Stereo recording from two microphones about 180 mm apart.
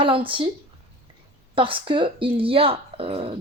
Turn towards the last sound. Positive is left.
turn(degrees=-30)  # may be behind; listen again after turning